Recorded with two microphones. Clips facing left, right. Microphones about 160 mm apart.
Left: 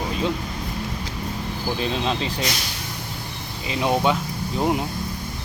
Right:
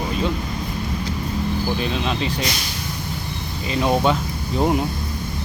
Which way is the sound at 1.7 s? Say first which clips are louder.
Right 1 dB; 30° left (ahead or behind).